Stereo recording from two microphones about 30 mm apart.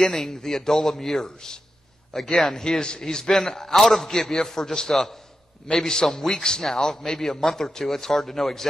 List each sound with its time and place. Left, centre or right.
0.0 s a man's voice: centre
1.2 s a man's voice: left
2.1 s a man's voice: centre
2.8 s a man's voice: left; by 8.6 s centre